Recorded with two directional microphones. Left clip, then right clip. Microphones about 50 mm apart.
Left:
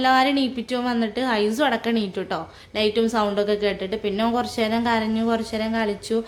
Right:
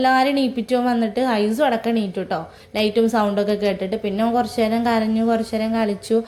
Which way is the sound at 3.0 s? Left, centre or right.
Right.